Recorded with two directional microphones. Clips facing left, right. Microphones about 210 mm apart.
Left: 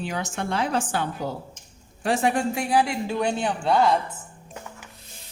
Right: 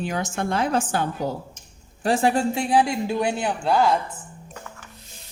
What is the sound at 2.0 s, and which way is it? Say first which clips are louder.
Speech: right 2 dB; 35° right (ahead or behind).